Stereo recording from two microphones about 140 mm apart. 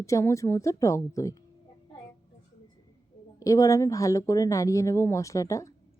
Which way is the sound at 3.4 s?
25° left (ahead or behind).